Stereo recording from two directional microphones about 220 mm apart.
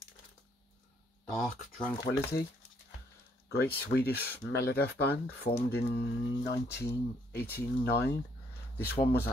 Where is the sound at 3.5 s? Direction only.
45° left (ahead or behind).